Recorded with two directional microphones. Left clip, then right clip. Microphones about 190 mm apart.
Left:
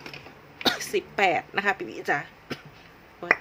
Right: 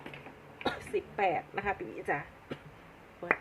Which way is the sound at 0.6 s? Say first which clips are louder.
Left 9 dB; 40° left (ahead or behind).